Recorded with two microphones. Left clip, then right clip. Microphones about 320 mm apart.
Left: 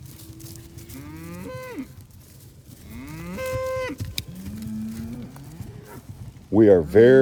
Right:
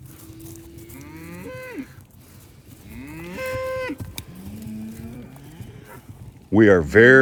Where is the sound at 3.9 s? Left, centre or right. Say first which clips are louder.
Left 4 dB; centre.